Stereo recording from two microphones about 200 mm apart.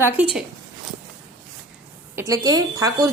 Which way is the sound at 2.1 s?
15° right (ahead or behind).